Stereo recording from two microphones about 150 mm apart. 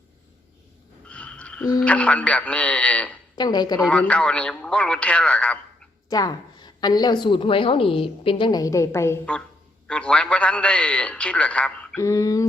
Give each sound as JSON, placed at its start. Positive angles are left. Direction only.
{"t": 1.0, "sound": "a sound", "side_deg": 10}
{"t": 1.8, "sound": "a man's voice", "side_deg": 10}
{"t": 3.3, "sound": "a woman's voice", "side_deg": 30}
{"t": 3.8, "sound": "a man's voice", "side_deg": 10}
{"t": 6.1, "sound": "a woman's voice", "side_deg": 25}
{"t": 9.9, "sound": "a man's voice", "side_deg": 5}
{"t": 11.9, "sound": "a woman's voice", "side_deg": 20}